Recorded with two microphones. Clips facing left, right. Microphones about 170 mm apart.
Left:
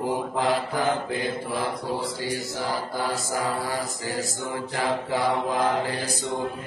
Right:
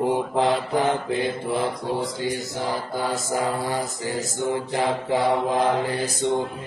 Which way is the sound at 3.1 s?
20° right (ahead or behind).